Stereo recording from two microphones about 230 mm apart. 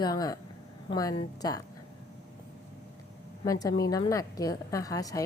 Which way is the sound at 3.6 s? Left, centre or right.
Centre.